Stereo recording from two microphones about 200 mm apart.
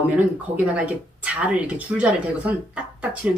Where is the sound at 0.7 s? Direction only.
5° right (ahead or behind).